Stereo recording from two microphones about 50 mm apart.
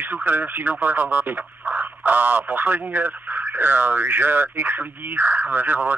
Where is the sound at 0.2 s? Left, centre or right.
Right.